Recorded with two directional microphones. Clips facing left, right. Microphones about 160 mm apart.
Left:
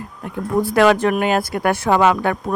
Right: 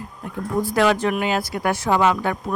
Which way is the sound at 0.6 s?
60° left (ahead or behind).